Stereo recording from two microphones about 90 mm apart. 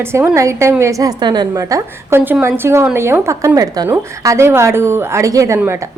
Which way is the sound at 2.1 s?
25° right (ahead or behind).